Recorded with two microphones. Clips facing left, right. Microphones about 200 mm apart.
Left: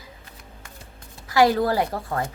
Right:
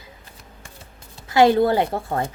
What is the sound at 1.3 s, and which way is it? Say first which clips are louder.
A woman's voice: right 3 dB; 25° right (ahead or behind).